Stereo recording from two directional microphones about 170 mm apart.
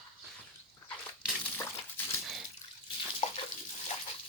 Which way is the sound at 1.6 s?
15° left (ahead or behind).